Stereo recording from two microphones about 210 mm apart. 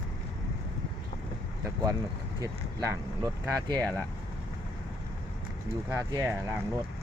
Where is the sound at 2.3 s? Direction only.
15° right (ahead or behind).